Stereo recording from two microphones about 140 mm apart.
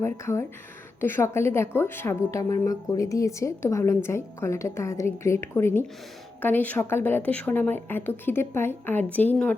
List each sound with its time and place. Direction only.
0.0 s a woman's voice: 20° left (ahead or behind)